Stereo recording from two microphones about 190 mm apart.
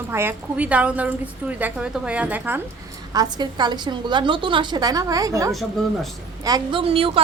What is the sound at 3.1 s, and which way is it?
A woman's voice, 20° right (ahead or behind).